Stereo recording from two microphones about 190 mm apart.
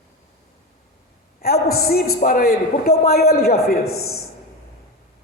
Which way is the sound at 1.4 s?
55° left (ahead or behind).